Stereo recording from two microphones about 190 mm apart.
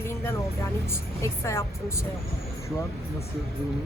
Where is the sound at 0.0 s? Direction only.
15° left (ahead or behind).